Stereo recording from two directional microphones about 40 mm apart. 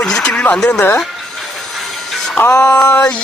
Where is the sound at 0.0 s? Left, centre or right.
Left.